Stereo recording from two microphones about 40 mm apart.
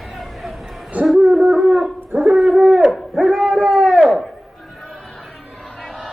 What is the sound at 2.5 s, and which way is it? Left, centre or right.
Hoot, centre.